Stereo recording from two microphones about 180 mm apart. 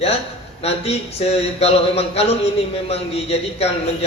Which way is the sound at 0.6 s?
35° left (ahead or behind).